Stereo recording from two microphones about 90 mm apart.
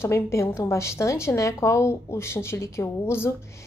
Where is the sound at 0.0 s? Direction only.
30° left (ahead or behind).